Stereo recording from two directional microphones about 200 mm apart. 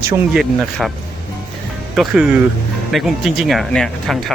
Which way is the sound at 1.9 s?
5° right (ahead or behind).